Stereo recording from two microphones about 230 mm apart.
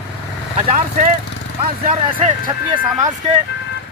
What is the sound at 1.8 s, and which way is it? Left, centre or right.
Speech, right.